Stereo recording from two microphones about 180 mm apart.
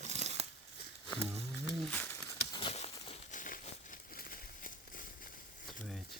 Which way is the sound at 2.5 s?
30° left (ahead or behind).